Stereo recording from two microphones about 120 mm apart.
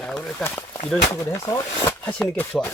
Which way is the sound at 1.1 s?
25° left (ahead or behind).